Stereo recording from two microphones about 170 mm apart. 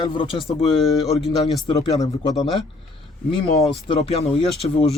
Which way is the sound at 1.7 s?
20° left (ahead or behind).